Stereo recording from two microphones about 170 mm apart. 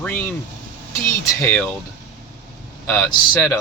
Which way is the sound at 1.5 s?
10° left (ahead or behind).